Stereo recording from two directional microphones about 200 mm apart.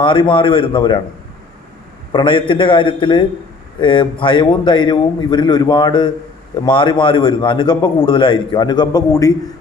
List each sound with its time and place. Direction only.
0.0 s a man's voice: 25° left (ahead or behind)
2.1 s a man's voice: 25° left (ahead or behind)